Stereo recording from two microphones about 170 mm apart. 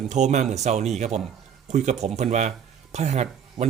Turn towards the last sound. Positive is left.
turn(degrees=-40)  # may be behind; listen again after turning